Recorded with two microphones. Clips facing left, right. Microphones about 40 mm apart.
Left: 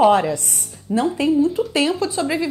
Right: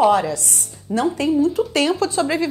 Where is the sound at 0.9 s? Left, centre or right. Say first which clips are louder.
Left 1 dB; centre.